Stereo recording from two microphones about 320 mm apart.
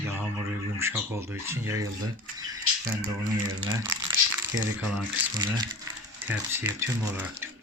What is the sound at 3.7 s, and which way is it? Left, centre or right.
Speech, centre.